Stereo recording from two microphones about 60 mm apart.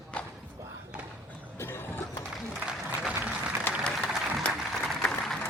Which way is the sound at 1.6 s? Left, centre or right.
Left.